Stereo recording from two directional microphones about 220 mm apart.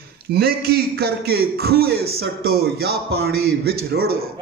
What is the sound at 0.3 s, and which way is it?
A man's voice, 45° right (ahead or behind).